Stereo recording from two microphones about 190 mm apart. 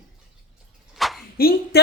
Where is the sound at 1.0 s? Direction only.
Centre (ahead or behind).